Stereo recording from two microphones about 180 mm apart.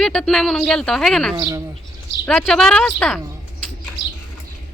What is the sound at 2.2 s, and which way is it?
Speech, 5° left (ahead or behind).